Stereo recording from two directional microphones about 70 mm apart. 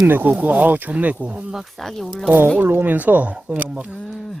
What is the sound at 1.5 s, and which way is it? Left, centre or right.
Speech, centre.